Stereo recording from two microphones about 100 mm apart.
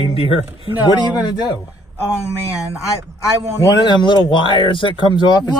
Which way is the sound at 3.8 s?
50° left (ahead or behind).